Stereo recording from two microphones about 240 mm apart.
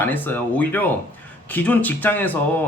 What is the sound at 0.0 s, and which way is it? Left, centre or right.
Speech, centre.